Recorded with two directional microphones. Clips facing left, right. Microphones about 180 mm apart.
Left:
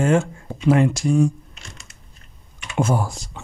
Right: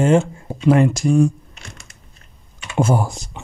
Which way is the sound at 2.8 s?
25° right (ahead or behind).